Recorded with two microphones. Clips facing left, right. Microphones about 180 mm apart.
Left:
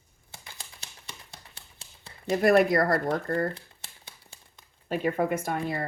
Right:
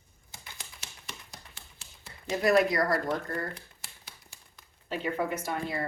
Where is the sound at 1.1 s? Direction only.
30° left (ahead or behind).